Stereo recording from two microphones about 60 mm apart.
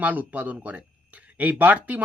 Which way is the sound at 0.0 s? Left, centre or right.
Right.